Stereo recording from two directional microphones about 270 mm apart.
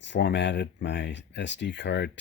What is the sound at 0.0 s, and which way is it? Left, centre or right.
Speech, left.